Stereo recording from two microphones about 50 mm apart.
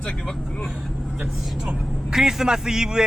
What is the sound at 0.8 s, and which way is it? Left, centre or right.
Vehicle, centre.